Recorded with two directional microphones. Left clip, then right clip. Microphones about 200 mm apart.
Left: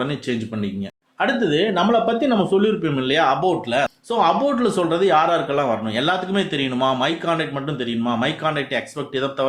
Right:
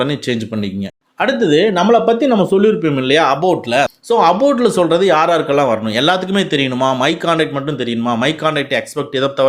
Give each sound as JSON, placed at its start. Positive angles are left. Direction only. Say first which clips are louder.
{"t": 0.0, "sound": "speech", "louder": "right 7 dB", "side_deg": -40}